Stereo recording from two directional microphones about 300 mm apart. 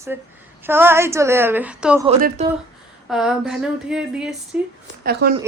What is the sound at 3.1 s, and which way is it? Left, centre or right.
A woman's voice, centre.